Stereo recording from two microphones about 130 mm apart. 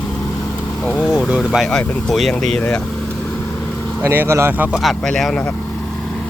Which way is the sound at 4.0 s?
20° right (ahead or behind).